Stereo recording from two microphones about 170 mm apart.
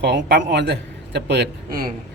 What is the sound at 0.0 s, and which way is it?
A man's voice, 90° right.